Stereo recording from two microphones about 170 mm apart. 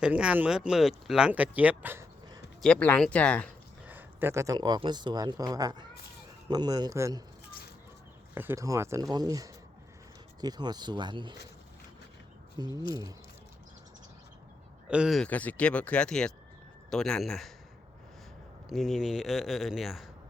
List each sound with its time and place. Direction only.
0.0 s speech: 5° right (ahead or behind)
2.6 s speech: 5° left (ahead or behind)
3.8 s speech: 10° right (ahead or behind)
8.4 s speech: 15° right (ahead or behind)
12.5 s speech: 25° right (ahead or behind)
14.8 s speech: 5° right (ahead or behind)
18.7 s speech: centre (ahead or behind)